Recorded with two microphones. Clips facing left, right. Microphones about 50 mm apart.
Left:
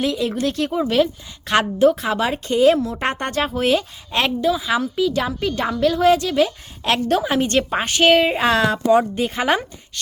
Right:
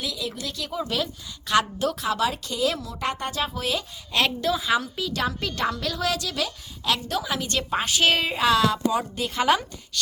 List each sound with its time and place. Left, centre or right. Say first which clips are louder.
0.0 s a woman's voice: left 11 dB; left
4.4 s a woman's voice: left 4 dB; centre; by 6.9 s left
6.9 s a woman's voice: left 9 dB; left